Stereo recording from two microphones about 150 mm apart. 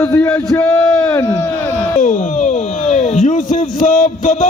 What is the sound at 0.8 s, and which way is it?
Speech, 25° left (ahead or behind).